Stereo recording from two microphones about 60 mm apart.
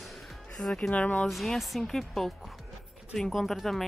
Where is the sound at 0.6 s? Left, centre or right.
Centre.